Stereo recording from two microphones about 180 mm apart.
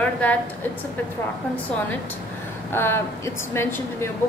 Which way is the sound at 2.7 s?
15° left (ahead or behind).